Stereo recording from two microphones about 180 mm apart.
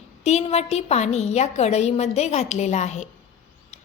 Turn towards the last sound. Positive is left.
turn(degrees=40)  # may be behind; listen again after turning